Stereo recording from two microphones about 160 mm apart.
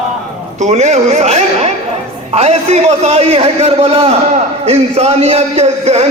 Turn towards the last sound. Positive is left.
turn(degrees=-40)  # may be behind; listen again after turning